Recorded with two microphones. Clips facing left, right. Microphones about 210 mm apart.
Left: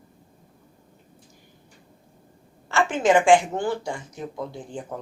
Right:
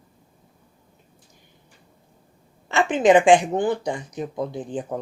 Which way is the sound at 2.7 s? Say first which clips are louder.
Right 3 dB; 20° right (ahead or behind).